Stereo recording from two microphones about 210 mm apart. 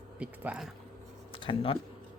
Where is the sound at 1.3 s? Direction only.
25° left (ahead or behind).